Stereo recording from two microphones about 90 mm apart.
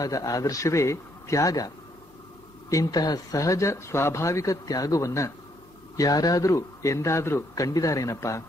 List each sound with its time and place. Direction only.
0.0 s speech: 40° left (ahead or behind)
2.7 s speech: 45° left (ahead or behind)